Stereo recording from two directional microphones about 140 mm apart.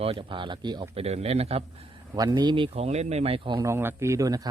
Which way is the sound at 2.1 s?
30° right (ahead or behind).